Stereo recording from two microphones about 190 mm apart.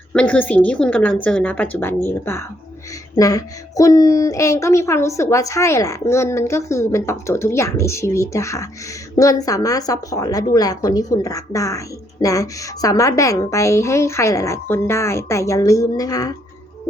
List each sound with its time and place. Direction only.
0.1 s speech: 5° left (ahead or behind)